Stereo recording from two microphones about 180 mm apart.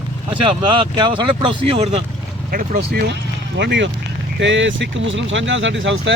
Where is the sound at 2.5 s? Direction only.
55° right (ahead or behind).